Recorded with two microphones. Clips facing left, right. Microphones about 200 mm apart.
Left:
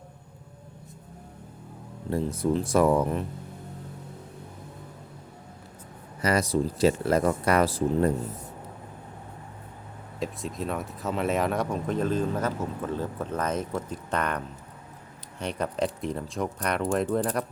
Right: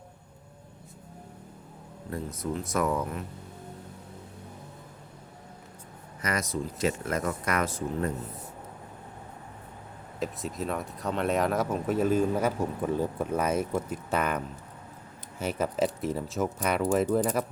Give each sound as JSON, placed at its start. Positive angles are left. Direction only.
{"t": 2.0, "sound": "speech", "side_deg": 30}
{"t": 6.2, "sound": "speech", "side_deg": 30}
{"t": 10.2, "sound": "speech", "side_deg": 0}